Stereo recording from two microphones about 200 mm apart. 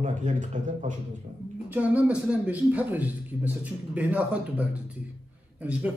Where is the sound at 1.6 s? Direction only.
10° right (ahead or behind).